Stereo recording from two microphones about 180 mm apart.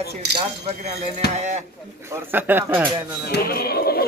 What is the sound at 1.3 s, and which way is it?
Speech, 40° right (ahead or behind).